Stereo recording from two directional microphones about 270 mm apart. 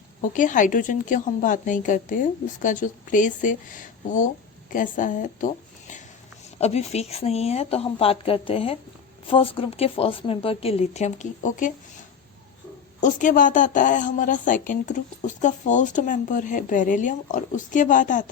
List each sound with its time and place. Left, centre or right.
0.2 s a woman's voice: left
13.0 s a woman's voice: left